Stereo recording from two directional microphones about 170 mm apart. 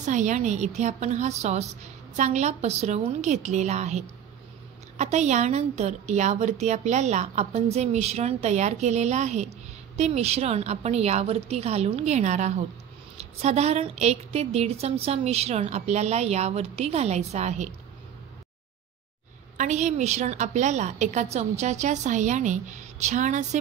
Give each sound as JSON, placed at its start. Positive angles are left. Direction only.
{"t": 0.0, "sound": "a woman's voice", "side_deg": -45}
{"t": 19.5, "sound": "a woman's voice", "side_deg": -45}